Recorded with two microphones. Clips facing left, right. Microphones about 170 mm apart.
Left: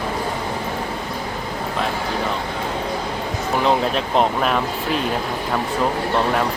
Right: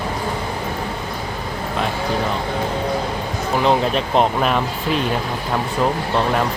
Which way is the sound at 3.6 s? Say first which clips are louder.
Right 2 dB; centre (ahead or behind).